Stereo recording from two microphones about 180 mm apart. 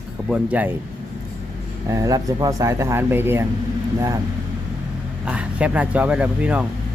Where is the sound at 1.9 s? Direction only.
20° right (ahead or behind).